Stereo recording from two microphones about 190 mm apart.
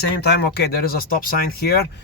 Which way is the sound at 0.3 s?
60° left (ahead or behind).